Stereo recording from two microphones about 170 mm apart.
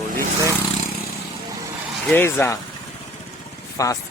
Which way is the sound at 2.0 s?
10° left (ahead or behind).